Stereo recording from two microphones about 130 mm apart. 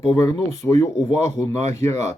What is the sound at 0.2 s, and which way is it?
Speech, 25° left (ahead or behind).